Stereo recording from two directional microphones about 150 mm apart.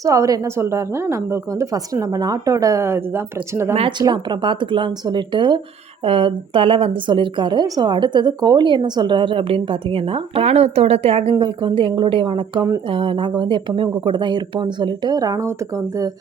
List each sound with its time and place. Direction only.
0.0 s a woman's voice: 20° right (ahead or behind)
3.8 s a woman's voice: 30° right (ahead or behind)